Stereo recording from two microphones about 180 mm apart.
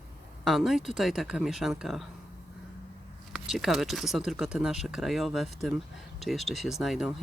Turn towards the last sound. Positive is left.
turn(degrees=0)  # may be behind; listen again after turning